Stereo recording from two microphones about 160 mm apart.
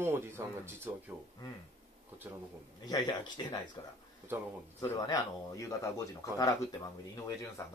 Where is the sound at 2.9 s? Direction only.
25° left (ahead or behind).